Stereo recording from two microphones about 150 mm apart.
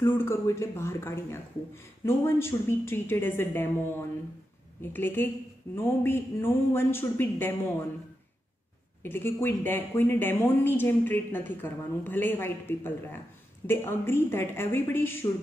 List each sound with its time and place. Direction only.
0.0 s speech: 15° left (ahead or behind)
9.0 s speech: 15° left (ahead or behind)